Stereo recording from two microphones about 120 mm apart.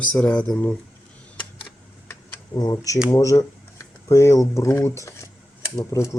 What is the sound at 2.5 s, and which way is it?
Speech, 35° left (ahead or behind).